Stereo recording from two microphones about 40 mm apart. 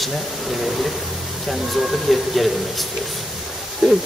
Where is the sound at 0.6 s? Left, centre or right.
Centre.